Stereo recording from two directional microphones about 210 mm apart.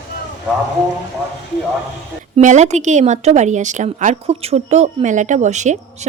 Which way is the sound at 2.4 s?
35° right (ahead or behind).